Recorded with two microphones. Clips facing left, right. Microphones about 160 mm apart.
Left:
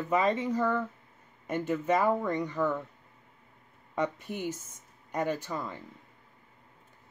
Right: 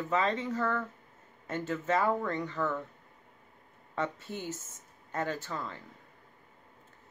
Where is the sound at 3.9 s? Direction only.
15° left (ahead or behind).